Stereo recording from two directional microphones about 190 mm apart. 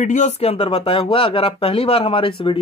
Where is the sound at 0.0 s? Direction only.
40° left (ahead or behind).